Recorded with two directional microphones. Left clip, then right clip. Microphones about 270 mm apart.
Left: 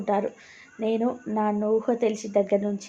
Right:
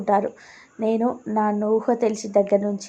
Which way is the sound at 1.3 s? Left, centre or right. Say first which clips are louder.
Right 3 dB; centre.